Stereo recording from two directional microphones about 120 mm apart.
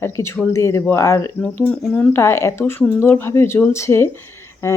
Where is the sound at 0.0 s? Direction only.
20° left (ahead or behind).